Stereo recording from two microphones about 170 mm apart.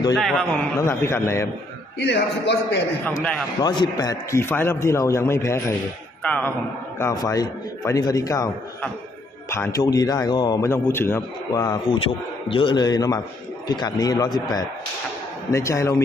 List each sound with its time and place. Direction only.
0.1 s a man's voice: centre (ahead or behind)
0.7 s a man's voice: 15° left (ahead or behind)
2.0 s a man's voice: 90° left
3.6 s a man's voice: 25° left (ahead or behind)
9.5 s a man's voice: 15° left (ahead or behind)
10.7 s a man's voice: 15° left (ahead or behind)
15.5 s a man's voice: 15° left (ahead or behind)